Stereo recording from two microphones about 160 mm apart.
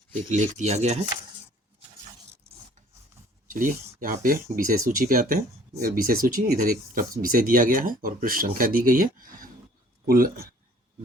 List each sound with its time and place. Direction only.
0.1 s speech: 50° right (ahead or behind)
3.5 s speech: 55° right (ahead or behind)